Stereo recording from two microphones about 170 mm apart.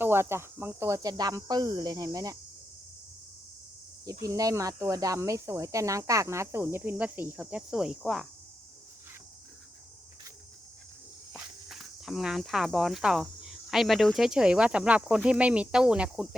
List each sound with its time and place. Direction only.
0.0 s speech: 15° right (ahead or behind)
4.2 s speech: 20° right (ahead or behind); by 8.3 s centre (ahead or behind)
11.3 s speech: centre (ahead or behind)